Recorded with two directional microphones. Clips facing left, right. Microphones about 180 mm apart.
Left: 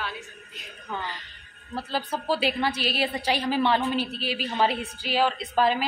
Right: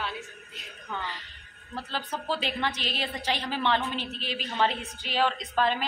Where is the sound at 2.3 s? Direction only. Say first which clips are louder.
Left 5 dB; 10° left (ahead or behind).